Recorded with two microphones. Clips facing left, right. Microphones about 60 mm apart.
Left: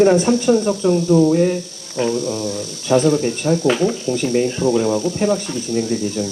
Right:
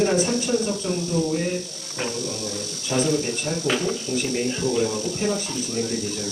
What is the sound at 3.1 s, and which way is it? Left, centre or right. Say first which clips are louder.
Speech: left 8 dB; left.